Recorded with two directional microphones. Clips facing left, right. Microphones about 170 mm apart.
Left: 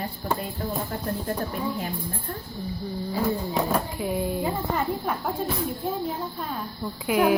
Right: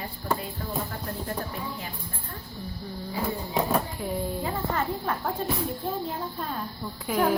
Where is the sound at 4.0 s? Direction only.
10° left (ahead or behind).